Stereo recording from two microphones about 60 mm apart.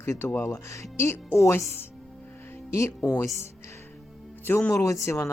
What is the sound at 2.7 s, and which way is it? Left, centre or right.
Speech, left.